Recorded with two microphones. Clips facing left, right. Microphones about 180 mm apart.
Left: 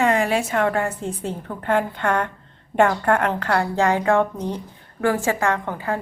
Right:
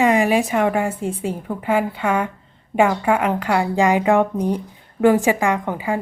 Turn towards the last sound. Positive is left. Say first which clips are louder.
# right 2 dB
turn(degrees=-15)  # may be behind; listen again after turning